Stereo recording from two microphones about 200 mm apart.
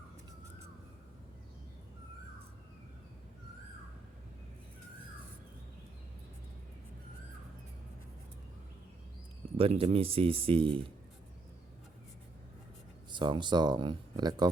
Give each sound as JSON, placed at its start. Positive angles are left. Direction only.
{"t": 9.6, "sound": "speech", "side_deg": -30}
{"t": 13.1, "sound": "speech", "side_deg": -25}